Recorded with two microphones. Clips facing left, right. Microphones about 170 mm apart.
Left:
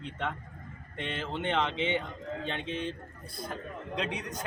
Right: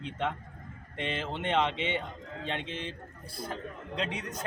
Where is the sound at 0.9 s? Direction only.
Centre (ahead or behind).